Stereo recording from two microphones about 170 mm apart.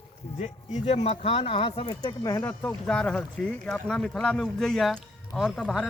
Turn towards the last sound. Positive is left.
turn(degrees=0)  # may be behind; listen again after turning